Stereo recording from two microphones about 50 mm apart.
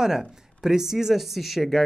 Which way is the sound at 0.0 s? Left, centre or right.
Centre.